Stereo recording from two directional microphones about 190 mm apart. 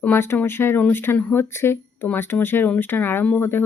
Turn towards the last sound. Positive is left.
turn(degrees=10)  # may be behind; listen again after turning